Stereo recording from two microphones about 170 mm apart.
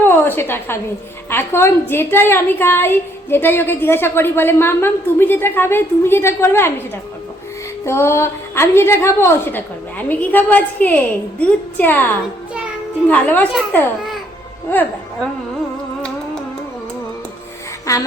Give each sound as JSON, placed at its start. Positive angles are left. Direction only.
{"t": 0.0, "sound": "a woman's voice", "side_deg": 10}
{"t": 7.9, "sound": "a woman's voice", "side_deg": 15}
{"t": 17.9, "sound": "a sound", "side_deg": 20}